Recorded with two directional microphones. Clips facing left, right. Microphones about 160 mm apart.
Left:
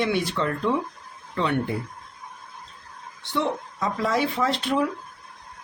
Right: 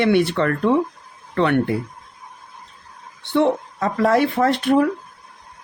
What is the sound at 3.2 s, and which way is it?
Speech, 60° right (ahead or behind).